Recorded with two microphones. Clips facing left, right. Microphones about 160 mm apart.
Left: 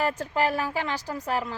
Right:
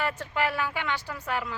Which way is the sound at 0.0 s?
40° left (ahead or behind).